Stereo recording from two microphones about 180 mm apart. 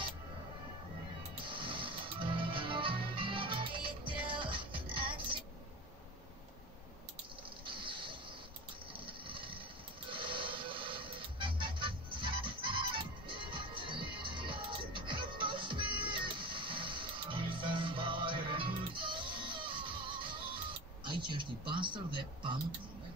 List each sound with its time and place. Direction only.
1.4 s music: 25° right (ahead or behind)
7.6 s mechanisms: 30° right (ahead or behind)
9.0 s a sound: 30° right (ahead or behind)
10.0 s music: 30° right (ahead or behind)
21.0 s speech: 25° right (ahead or behind)